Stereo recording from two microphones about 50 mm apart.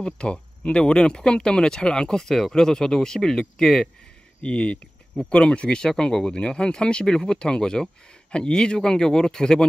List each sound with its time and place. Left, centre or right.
0.0 s speech: left